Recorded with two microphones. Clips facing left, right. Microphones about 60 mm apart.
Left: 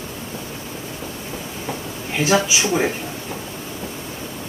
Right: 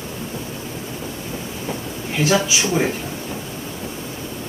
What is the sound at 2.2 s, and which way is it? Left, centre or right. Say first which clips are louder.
Speech: even; centre.